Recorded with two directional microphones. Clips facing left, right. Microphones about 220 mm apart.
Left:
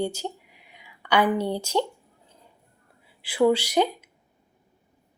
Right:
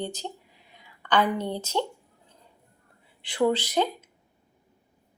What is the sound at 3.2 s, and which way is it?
Speech, 10° left (ahead or behind).